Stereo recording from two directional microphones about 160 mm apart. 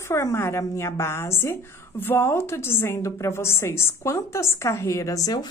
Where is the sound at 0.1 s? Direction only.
15° left (ahead or behind).